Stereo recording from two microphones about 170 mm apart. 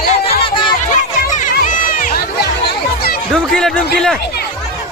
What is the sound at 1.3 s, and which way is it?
Crowd, 50° left (ahead or behind).